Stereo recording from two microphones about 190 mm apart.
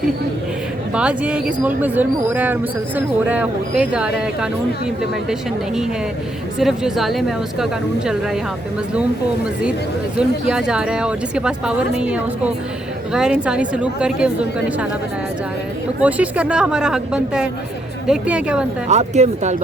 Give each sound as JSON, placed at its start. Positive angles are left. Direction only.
{"t": 0.9, "sound": "speech", "side_deg": -5}
{"t": 10.2, "sound": "speech", "side_deg": -5}
{"t": 16.0, "sound": "speech", "side_deg": -5}
{"t": 18.9, "sound": "speech", "side_deg": -35}